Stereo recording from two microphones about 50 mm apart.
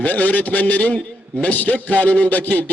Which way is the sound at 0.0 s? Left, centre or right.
Left.